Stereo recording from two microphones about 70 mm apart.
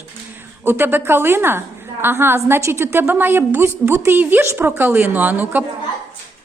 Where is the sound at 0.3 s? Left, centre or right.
Right.